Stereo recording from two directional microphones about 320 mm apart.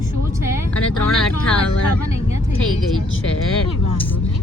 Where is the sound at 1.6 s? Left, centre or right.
Left.